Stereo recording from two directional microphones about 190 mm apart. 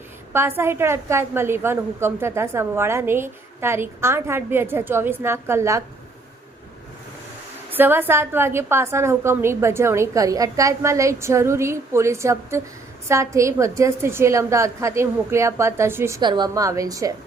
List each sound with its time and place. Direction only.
0.3 s a woman's voice: 10° right (ahead or behind)
7.7 s a woman's voice: 10° right (ahead or behind)